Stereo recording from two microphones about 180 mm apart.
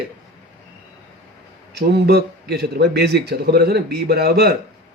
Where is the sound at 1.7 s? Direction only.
65° right (ahead or behind).